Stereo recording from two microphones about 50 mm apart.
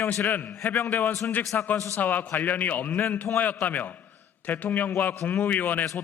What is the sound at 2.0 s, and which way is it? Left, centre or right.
A man's voice, left.